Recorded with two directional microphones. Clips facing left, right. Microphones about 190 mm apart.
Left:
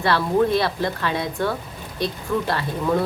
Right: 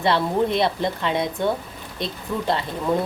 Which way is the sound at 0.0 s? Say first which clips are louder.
Left 1 dB; 20° right (ahead or behind).